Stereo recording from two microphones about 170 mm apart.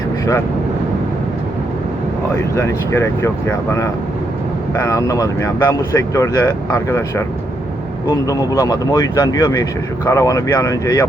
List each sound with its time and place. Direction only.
2.4 s speech: 15° left (ahead or behind)